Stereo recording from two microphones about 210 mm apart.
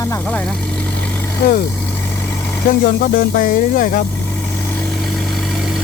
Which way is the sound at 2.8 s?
40° left (ahead or behind).